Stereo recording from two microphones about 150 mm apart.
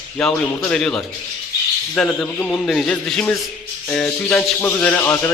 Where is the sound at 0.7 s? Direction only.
5° left (ahead or behind).